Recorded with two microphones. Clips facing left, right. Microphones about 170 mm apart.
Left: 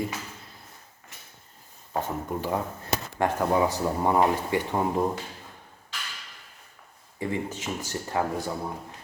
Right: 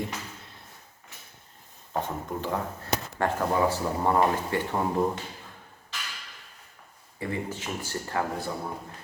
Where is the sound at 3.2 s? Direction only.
15° left (ahead or behind).